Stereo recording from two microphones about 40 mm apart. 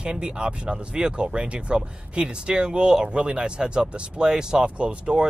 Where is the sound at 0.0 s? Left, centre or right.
Right.